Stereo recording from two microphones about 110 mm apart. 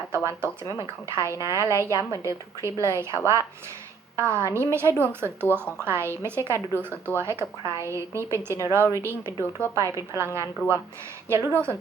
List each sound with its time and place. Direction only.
0.1 s a woman's voice: 25° right (ahead or behind)
11.3 s a woman's voice: 25° right (ahead or behind)